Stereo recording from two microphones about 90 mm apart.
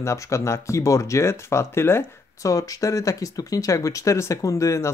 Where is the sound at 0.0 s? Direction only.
35° left (ahead or behind).